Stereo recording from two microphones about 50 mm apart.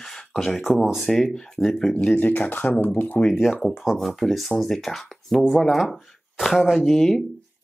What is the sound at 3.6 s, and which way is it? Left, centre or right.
Speech, centre.